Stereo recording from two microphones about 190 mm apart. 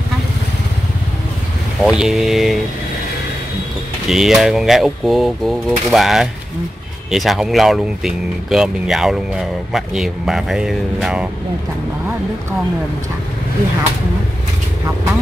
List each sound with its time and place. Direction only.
1.8 s speech: 5° right (ahead or behind)
4.1 s speech: centre (ahead or behind)